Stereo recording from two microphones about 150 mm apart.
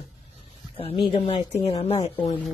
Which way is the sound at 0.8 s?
40° left (ahead or behind).